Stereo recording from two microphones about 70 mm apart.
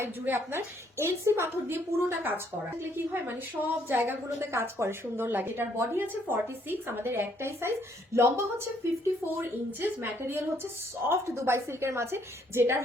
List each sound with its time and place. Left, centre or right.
0.0 s a woman's voice: right
4.4 s a woman's voice: right
9.2 s a woman's voice: right